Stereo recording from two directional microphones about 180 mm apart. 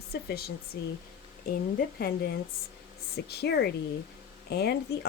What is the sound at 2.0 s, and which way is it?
A woman's voice, 60° left (ahead or behind).